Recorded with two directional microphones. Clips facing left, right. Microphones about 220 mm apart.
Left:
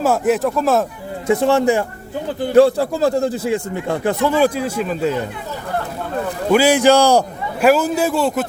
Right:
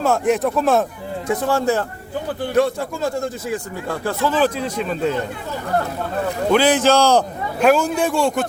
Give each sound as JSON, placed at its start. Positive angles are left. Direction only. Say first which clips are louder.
{"t": 0.0, "sound": "speech", "louder": "left 1 dB", "side_deg": 5}
{"t": 1.3, "sound": "a man's voice", "louder": "left 5 dB", "side_deg": 25}
{"t": 2.6, "sound": "a man's voice", "louder": "left 7 dB", "side_deg": 35}
{"t": 6.5, "sound": "a man's voice", "louder": "left 3 dB", "side_deg": 10}